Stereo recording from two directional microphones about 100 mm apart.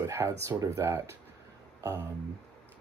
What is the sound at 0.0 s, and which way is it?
Speech, 25° right (ahead or behind).